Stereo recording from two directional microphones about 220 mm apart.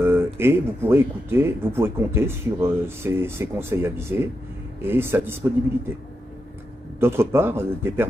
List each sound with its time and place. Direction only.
0.0 s speech: 10° right (ahead or behind)
7.0 s speech: 10° right (ahead or behind)